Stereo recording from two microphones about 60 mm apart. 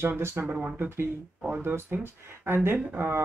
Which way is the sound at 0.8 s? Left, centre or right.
Right.